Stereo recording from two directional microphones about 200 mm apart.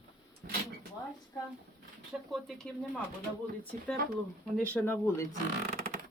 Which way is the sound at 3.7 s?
10° left (ahead or behind).